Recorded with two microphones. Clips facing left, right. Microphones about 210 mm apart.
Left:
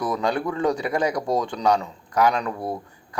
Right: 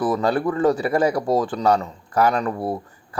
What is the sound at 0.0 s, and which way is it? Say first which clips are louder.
Speech: right 4 dB; 5° right (ahead or behind).